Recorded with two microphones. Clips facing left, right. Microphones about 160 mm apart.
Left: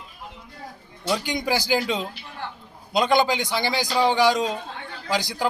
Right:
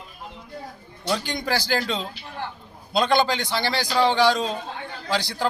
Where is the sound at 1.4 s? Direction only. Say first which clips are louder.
Left 2 dB; 15° left (ahead or behind).